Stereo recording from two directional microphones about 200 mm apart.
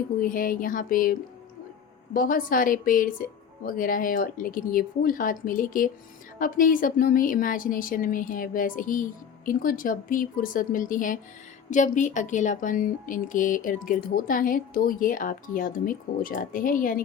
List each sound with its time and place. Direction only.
0.2 s speech: 45° left (ahead or behind)